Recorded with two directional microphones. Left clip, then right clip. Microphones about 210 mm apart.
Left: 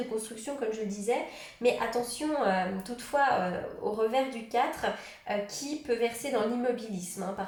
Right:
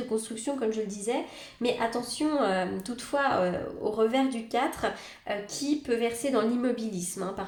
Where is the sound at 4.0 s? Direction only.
50° right (ahead or behind).